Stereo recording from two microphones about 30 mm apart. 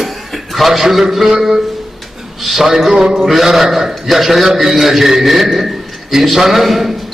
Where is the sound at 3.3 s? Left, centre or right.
Centre.